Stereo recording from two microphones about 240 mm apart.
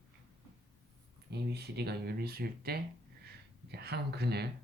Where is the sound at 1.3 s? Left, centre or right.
Right.